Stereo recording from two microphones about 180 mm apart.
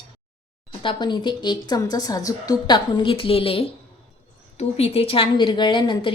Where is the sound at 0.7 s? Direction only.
30° left (ahead or behind).